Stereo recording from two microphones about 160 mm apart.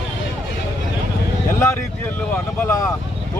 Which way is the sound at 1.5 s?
15° left (ahead or behind).